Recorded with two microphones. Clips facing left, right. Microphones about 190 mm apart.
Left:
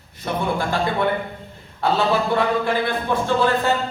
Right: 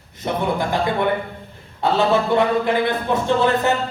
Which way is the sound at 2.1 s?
20° right (ahead or behind).